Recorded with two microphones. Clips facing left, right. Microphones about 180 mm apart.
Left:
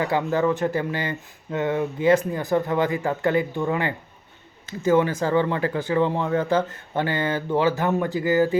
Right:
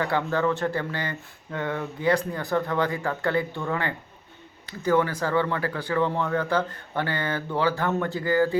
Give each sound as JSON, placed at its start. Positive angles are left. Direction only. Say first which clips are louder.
{"t": 0.0, "sound": "speech", "louder": "left 3 dB", "side_deg": 15}